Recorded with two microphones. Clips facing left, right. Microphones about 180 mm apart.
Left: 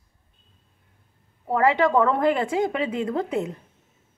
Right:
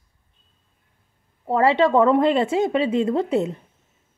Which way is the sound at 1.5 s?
25° right (ahead or behind).